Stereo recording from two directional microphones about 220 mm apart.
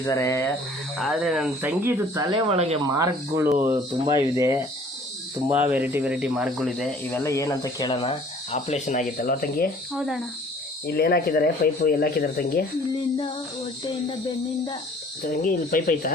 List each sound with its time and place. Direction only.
0.0 s speech: 15° left (ahead or behind)
0.9 s speech: centre (ahead or behind)
2.3 s speech: 30° right (ahead or behind)
2.8 s speech: 15° right (ahead or behind); by 8.1 s 20° left (ahead or behind)
8.5 s speech: 30° left (ahead or behind)
9.9 s speech: centre (ahead or behind)
10.8 s speech: 45° left (ahead or behind)
15.3 s speech: 40° left (ahead or behind)